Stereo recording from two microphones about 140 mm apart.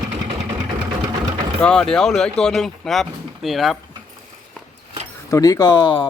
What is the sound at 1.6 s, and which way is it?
Speech, 5° left (ahead or behind).